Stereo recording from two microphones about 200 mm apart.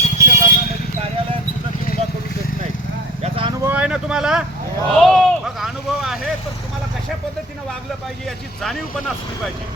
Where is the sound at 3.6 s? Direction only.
5° right (ahead or behind).